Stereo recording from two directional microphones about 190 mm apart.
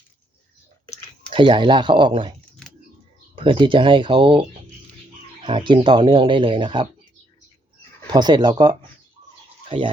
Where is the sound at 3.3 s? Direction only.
25° right (ahead or behind).